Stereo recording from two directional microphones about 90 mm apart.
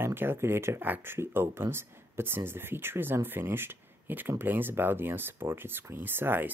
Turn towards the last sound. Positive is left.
turn(degrees=-25)  # may be behind; listen again after turning